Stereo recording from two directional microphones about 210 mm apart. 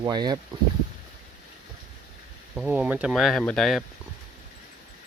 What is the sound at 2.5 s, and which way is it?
Speech, 5° right (ahead or behind).